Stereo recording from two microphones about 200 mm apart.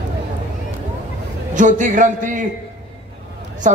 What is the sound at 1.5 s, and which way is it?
Speech, 40° right (ahead or behind).